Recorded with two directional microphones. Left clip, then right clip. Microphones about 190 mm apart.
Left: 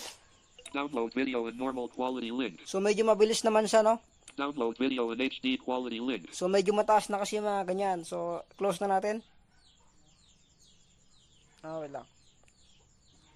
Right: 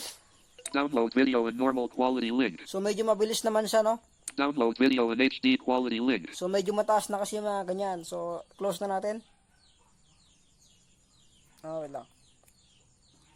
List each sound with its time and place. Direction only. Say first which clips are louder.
0.5 s speech: right 6 dB; 20° right (ahead or behind)
2.6 s speech: left 5 dB; 10° left (ahead or behind)
4.3 s speech: right 5 dB; 20° right (ahead or behind)
6.3 s speech: left 5 dB; 15° left (ahead or behind)
11.6 s speech: right 2 dB; 5° left (ahead or behind)